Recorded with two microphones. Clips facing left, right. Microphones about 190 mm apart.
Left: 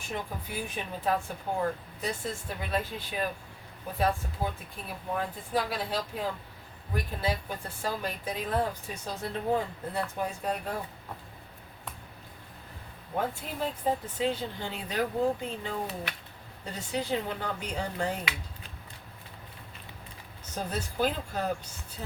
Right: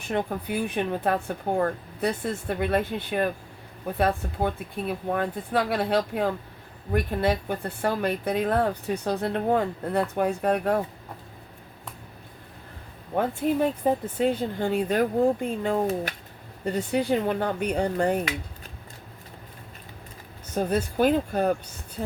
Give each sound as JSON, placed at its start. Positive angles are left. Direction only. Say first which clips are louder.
{"t": 0.1, "sound": "speech", "louder": "right 9 dB", "side_deg": -60}
{"t": 13.4, "sound": "speech", "louder": "right 9 dB", "side_deg": -55}
{"t": 20.6, "sound": "speech", "louder": "right 7 dB", "side_deg": -55}